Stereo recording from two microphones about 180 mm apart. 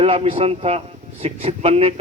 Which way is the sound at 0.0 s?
30° right (ahead or behind).